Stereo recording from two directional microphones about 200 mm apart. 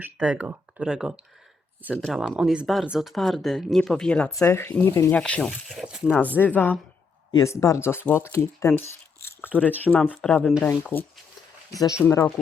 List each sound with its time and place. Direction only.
0.0 s speech: 5° right (ahead or behind)
6.4 s speech: 10° left (ahead or behind)